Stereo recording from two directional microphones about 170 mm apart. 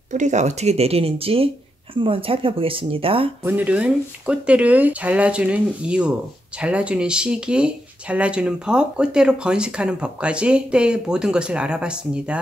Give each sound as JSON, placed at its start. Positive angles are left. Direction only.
{"t": 0.1, "sound": "speech", "side_deg": -45}
{"t": 3.4, "sound": "speech", "side_deg": -10}